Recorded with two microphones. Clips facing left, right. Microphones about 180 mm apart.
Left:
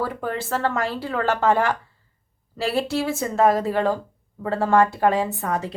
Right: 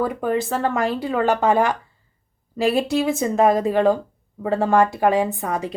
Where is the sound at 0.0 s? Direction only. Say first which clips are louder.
Right 5 dB; 15° right (ahead or behind).